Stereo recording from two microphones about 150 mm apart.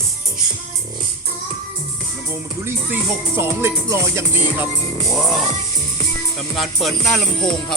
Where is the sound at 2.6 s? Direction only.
15° right (ahead or behind).